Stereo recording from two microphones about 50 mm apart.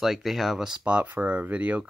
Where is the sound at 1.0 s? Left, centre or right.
Right.